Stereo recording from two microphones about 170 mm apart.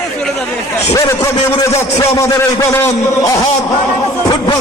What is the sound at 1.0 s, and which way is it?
A man's voice, 15° left (ahead or behind).